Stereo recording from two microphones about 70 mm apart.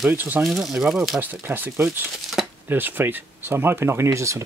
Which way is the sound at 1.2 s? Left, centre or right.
Right.